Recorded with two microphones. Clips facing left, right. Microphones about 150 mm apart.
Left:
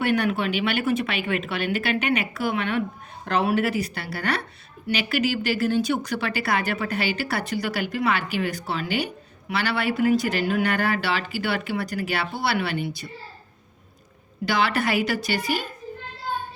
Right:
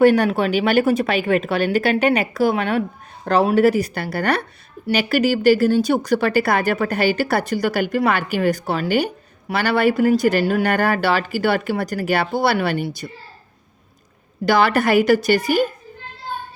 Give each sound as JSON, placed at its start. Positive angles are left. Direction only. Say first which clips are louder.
{"t": 0.0, "sound": "speech", "louder": "right 8 dB", "side_deg": -40}
{"t": 14.4, "sound": "speech", "louder": "right 7 dB", "side_deg": -45}